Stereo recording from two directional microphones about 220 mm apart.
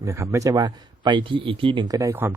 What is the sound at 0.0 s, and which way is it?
Speech, 10° right (ahead or behind).